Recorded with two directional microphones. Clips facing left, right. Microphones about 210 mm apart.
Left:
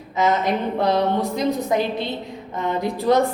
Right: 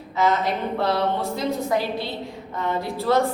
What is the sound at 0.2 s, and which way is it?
A woman's voice, 20° left (ahead or behind).